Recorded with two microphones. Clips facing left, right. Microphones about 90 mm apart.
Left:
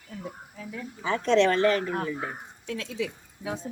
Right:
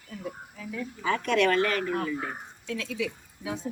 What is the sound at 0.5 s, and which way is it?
A woman's voice, 25° left (ahead or behind).